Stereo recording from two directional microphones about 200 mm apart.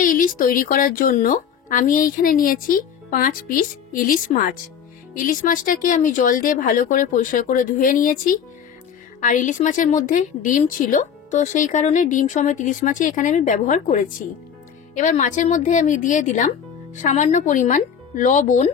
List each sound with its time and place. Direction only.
0.0 s a woman's voice: 40° left (ahead or behind)